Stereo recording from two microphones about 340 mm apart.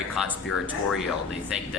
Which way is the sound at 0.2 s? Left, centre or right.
Centre.